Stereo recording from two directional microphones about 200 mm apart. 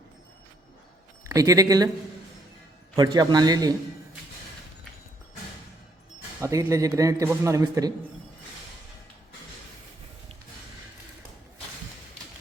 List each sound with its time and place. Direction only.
1.3 s a man's voice: 15° right (ahead or behind)
2.9 s a man's voice: 20° right (ahead or behind)
6.4 s a man's voice: 15° right (ahead or behind)